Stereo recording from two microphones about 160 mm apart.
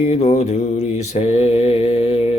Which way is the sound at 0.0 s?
45° left (ahead or behind).